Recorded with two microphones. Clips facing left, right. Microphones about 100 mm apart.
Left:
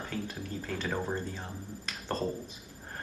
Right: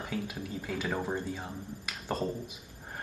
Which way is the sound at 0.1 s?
10° right (ahead or behind).